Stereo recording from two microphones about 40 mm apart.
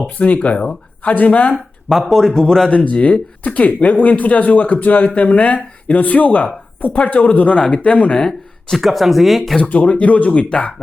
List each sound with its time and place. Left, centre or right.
0.2 s speech: left
1.0 s speech: left
1.9 s speech: centre
2.6 s speech: left
7.5 s speech: left
8.2 s speech: centre
8.8 s speech: centre
9.6 s speech: left